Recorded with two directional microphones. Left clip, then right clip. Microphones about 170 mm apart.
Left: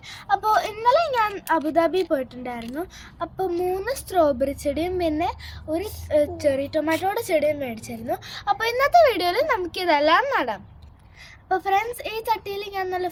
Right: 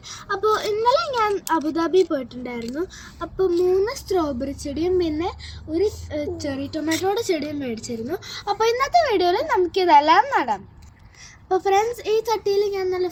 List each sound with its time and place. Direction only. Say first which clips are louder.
0.1 s a woman's voice: left 1 dB; 25° left (ahead or behind)
6.5 s a woman's voice: left 3 dB; 25° left (ahead or behind)